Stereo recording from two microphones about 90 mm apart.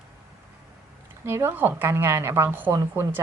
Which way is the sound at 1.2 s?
30° right (ahead or behind).